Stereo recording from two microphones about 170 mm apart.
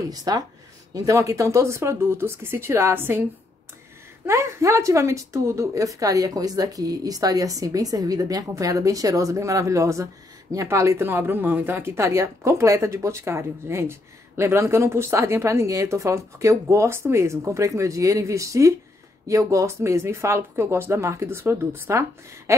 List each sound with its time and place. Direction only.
0.1 s a woman's voice: 20° right (ahead or behind)
4.3 s a woman's voice: 15° right (ahead or behind)